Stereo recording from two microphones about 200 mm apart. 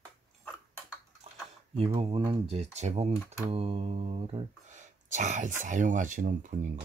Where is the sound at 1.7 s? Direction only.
30° right (ahead or behind).